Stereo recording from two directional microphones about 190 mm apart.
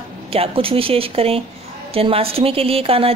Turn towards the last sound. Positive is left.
turn(degrees=-30)  # may be behind; listen again after turning